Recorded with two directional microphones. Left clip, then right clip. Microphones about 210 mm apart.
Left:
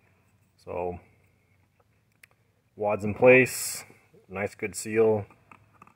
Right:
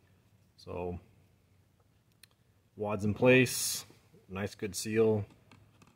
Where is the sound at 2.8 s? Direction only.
30° right (ahead or behind).